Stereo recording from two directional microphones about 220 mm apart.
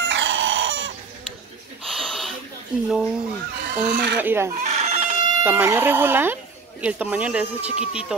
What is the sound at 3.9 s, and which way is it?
Speech, 50° right (ahead or behind).